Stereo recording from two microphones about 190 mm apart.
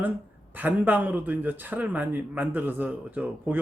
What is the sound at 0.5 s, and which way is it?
A man's voice, 10° right (ahead or behind).